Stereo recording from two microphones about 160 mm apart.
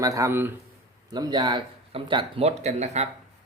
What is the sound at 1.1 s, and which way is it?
Speech, 25° right (ahead or behind).